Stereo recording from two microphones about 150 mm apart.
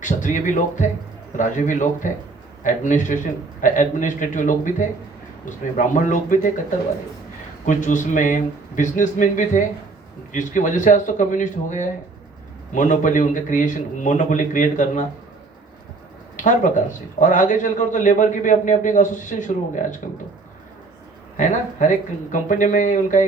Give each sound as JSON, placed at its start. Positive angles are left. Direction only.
{"t": 0.0, "sound": "speech", "side_deg": 55}
{"t": 7.6, "sound": "speech", "side_deg": 55}
{"t": 16.4, "sound": "speech", "side_deg": 55}
{"t": 21.3, "sound": "speech", "side_deg": 55}